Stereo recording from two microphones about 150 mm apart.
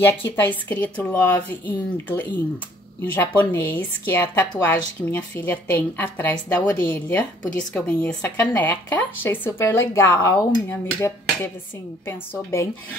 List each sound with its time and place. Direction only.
0.0 s speech: 15° left (ahead or behind)